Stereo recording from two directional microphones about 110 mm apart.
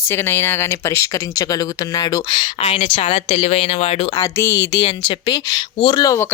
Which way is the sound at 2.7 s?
55° left (ahead or behind).